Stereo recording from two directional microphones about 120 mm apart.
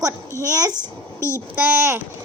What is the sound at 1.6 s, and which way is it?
Speech, 15° right (ahead or behind).